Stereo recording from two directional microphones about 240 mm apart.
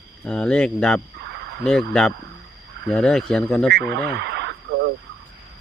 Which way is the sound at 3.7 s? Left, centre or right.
Right.